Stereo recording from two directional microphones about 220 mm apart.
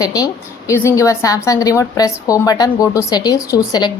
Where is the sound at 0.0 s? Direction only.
15° left (ahead or behind).